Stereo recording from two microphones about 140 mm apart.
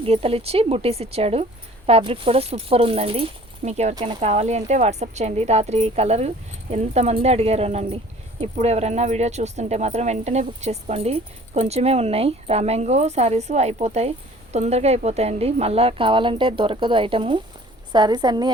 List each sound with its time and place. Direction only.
0.0 s a woman's voice: 45° right (ahead or behind)